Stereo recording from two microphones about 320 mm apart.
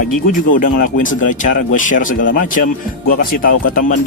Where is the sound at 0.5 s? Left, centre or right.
Left.